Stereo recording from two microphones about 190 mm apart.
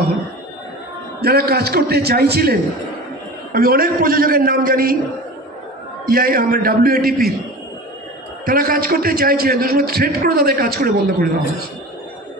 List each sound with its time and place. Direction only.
1.2 s a man's voice: 55° right (ahead or behind)
6.0 s a man's voice: 50° right (ahead or behind)
8.5 s a man's voice: 50° right (ahead or behind)